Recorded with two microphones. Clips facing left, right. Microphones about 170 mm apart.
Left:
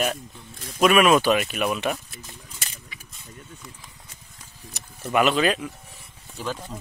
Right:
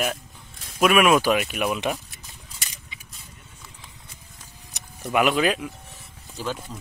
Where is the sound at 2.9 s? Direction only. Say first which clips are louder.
Left 1 dB; 20° right (ahead or behind).